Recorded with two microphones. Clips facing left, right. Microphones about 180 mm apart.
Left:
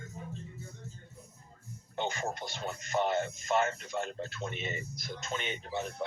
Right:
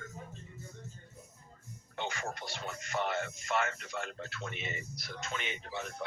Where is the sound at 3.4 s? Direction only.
40° left (ahead or behind).